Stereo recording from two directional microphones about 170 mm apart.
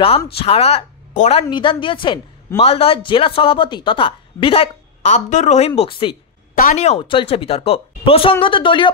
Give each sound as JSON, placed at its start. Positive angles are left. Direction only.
{"t": 0.4, "sound": "a woman's voice", "side_deg": 35}
{"t": 5.8, "sound": "speech", "side_deg": 30}
{"t": 6.5, "sound": "speech", "side_deg": 50}